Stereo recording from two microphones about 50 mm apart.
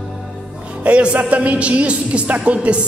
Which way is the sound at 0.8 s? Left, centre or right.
Right.